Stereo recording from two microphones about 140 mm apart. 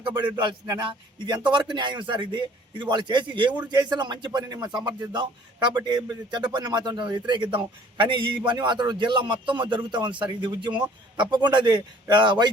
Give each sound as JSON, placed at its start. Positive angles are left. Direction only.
{"t": 0.0, "sound": "speech", "side_deg": -35}